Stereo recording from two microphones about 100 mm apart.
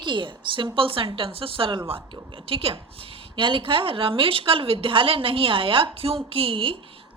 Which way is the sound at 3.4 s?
60° right (ahead or behind).